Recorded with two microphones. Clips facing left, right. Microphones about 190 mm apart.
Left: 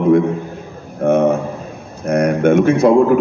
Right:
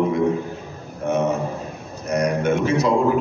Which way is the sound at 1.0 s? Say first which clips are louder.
Left 7 dB; 55° left (ahead or behind).